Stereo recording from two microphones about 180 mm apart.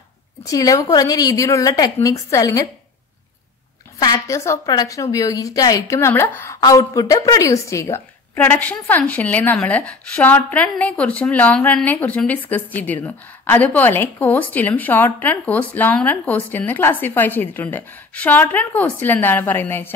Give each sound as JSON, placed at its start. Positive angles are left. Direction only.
{"t": 0.4, "sound": "a woman's voice", "side_deg": 20}
{"t": 4.0, "sound": "a woman's voice", "side_deg": 20}